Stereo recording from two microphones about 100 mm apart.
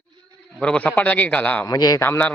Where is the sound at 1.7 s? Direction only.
40° left (ahead or behind).